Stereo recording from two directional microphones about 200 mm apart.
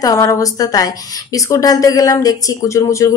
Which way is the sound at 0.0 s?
15° left (ahead or behind).